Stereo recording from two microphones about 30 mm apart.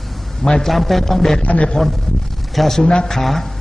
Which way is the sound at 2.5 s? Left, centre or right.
Centre.